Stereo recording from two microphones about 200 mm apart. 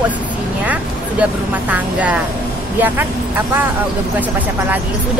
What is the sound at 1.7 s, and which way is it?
Speech, 5° right (ahead or behind).